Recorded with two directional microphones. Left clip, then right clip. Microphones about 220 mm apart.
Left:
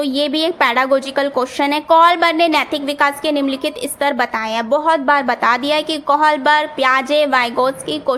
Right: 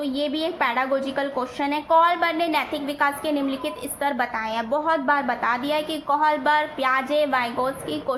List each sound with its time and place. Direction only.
0.0 s a woman's voice: 50° left (ahead or behind)